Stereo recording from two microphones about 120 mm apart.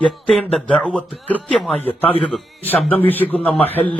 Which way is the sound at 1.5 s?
5° left (ahead or behind).